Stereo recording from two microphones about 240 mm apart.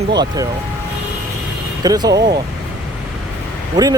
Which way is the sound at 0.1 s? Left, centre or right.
Centre.